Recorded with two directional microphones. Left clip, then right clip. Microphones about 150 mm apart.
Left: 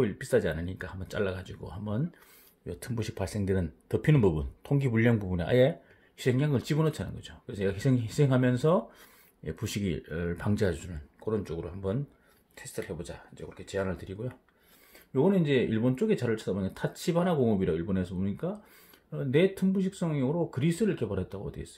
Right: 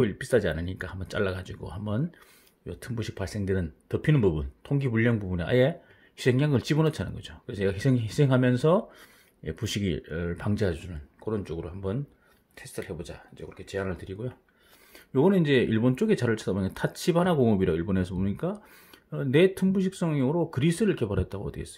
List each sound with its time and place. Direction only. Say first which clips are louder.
0.0 s speech: right 2 dB; 20° right (ahead or behind)
2.6 s speech: right 1 dB; 10° right (ahead or behind)
6.1 s speech: right 4 dB; 25° right (ahead or behind)
15.1 s speech: right 3 dB; 35° right (ahead or behind)